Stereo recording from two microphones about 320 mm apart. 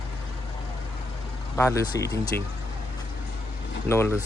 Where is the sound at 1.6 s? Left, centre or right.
Centre.